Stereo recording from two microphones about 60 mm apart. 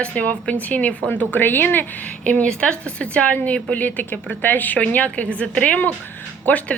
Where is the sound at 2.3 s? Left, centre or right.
Centre.